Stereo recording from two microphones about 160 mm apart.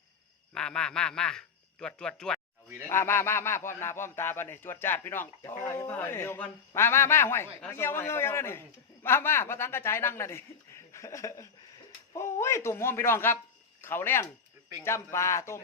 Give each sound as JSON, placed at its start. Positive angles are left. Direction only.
{"t": 0.5, "sound": "speech", "side_deg": 5}
{"t": 2.8, "sound": "a woman's voice", "side_deg": 15}